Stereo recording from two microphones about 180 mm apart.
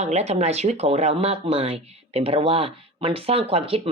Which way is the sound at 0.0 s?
40° right (ahead or behind).